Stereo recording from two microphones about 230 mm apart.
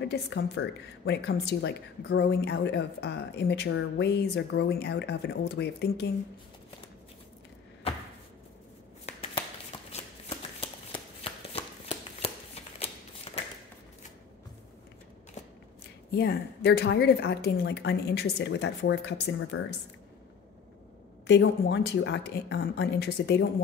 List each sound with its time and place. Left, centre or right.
0.0 s speech: left
9.7 s shuffling cards: centre
16.1 s speech: left
21.3 s speech: left